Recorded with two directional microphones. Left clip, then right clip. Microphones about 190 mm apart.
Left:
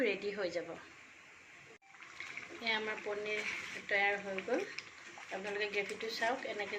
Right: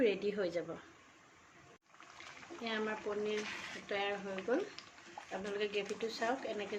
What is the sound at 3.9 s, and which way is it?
Speech, 50° right (ahead or behind).